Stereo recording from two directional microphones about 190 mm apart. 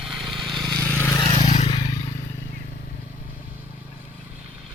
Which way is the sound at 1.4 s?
35° left (ahead or behind).